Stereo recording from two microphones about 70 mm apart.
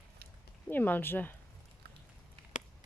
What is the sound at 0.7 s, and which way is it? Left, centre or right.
Speech, left.